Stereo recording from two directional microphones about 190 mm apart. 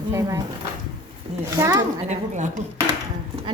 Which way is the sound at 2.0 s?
40° right (ahead or behind).